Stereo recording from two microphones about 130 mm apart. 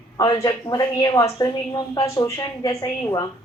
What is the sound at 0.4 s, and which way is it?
A woman's voice, 30° left (ahead or behind).